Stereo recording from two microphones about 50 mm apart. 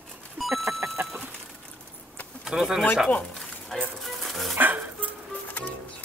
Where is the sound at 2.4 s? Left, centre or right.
Centre.